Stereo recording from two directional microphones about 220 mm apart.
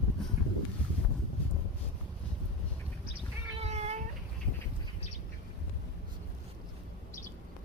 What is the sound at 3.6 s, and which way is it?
Cat, 30° right (ahead or behind).